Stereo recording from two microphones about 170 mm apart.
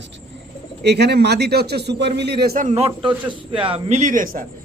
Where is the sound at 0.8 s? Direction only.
75° right (ahead or behind).